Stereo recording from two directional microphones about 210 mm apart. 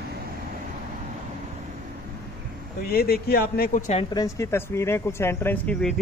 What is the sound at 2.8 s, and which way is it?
Speech, 45° left (ahead or behind).